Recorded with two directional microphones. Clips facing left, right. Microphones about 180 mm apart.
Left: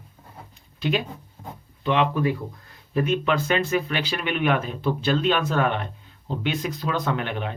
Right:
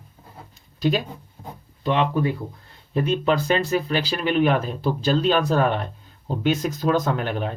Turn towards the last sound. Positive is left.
turn(degrees=-40)  # may be behind; listen again after turning